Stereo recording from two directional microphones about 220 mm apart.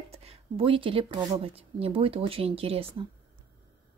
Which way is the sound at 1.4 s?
25° right (ahead or behind).